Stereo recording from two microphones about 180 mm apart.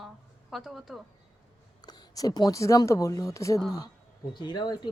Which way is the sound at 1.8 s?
20° left (ahead or behind).